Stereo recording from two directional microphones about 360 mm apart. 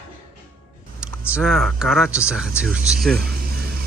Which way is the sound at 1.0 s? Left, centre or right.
Centre.